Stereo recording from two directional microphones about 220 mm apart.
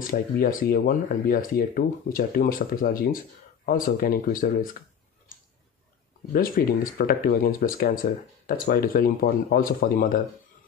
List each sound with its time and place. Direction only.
0.1 s speech: 40° left (ahead or behind)
6.3 s speech: 40° left (ahead or behind)